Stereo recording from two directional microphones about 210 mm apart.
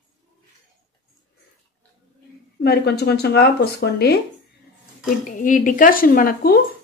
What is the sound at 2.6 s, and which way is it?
A woman's voice, 50° left (ahead or behind).